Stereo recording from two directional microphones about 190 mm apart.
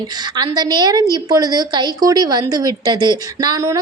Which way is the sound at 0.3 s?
20° right (ahead or behind).